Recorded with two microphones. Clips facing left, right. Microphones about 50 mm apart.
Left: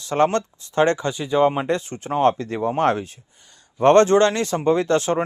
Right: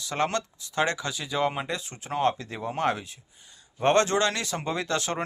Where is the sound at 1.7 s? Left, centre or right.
Left.